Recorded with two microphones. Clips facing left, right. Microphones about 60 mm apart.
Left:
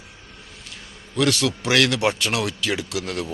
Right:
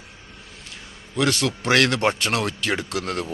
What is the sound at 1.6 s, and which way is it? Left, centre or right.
Speech, right.